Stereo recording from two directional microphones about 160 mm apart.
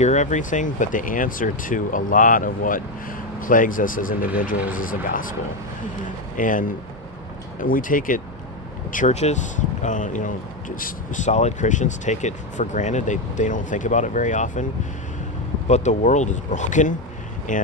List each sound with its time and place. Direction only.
0.0 s speech: 50° left (ahead or behind)
6.3 s speech: 55° left (ahead or behind)
8.9 s speech: 45° left (ahead or behind)
15.7 s speech: 45° left (ahead or behind)